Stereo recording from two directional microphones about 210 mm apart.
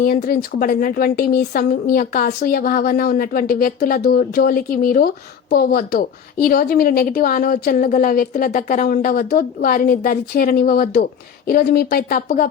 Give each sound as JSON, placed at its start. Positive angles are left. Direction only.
{"t": 0.0, "sound": "a woman's voice", "side_deg": 45}